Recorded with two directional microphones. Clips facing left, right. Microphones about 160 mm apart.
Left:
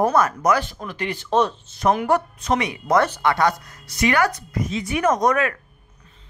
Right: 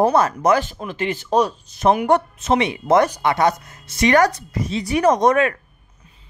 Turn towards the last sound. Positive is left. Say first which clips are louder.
# right 4 dB
turn(degrees=-25)  # may be behind; listen again after turning